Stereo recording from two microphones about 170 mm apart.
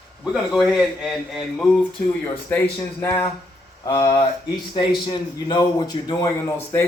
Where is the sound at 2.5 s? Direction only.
10° left (ahead or behind).